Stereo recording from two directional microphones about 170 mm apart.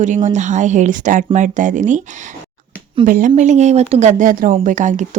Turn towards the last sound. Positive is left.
turn(degrees=-45)  # may be behind; listen again after turning